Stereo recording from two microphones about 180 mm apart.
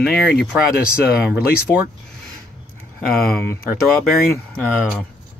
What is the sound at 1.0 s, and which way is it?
Speech, 65° left (ahead or behind).